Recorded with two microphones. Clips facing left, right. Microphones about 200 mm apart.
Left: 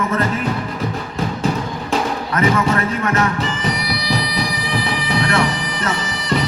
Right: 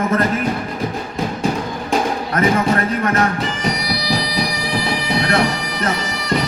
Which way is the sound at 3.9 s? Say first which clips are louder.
Right 1 dB; 40° right (ahead or behind).